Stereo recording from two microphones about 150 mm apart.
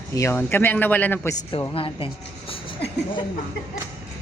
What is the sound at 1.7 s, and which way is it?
Speech, 35° left (ahead or behind).